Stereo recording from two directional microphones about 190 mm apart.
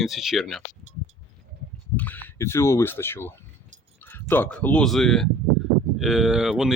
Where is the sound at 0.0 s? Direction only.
Centre (ahead or behind).